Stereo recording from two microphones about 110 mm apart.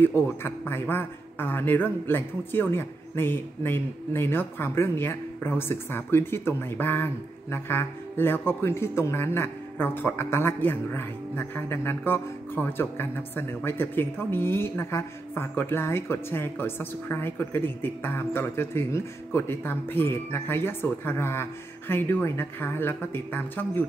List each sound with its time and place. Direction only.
0.0 s a man's voice: 20° left (ahead or behind)